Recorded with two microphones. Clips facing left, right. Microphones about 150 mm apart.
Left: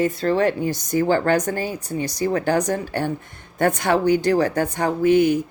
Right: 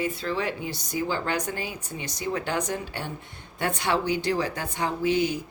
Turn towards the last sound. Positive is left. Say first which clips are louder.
# left 8 dB
turn(degrees=50)  # may be behind; listen again after turning